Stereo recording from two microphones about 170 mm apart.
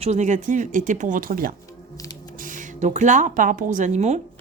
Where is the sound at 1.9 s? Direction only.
20° left (ahead or behind).